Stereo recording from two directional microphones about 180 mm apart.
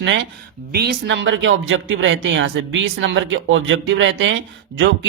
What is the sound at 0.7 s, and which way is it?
Speech, 60° right (ahead or behind).